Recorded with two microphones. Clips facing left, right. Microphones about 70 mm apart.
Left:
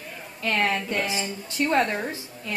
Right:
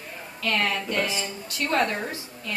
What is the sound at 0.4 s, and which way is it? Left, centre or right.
A woman's voice, left.